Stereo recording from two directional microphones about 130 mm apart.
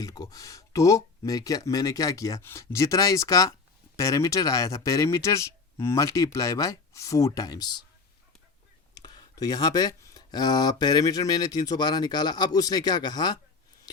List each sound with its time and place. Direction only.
0.0 s speech: 30° left (ahead or behind)
9.0 s speech: 30° left (ahead or behind)